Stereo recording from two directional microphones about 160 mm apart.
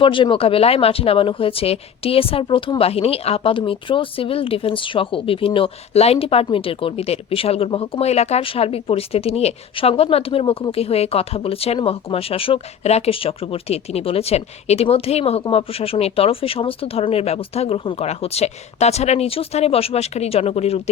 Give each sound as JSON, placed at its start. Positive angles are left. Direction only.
{"t": 0.0, "sound": "speech", "side_deg": 30}